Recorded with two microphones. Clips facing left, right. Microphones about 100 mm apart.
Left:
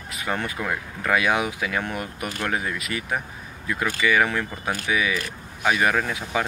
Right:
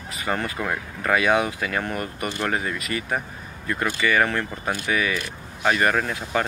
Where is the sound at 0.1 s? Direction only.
Centre (ahead or behind).